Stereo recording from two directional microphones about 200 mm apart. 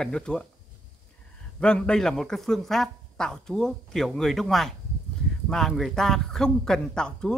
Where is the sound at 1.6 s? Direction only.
5° left (ahead or behind).